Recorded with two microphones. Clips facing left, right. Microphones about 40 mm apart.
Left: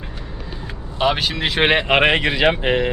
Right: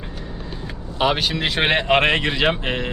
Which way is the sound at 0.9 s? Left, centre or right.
Centre.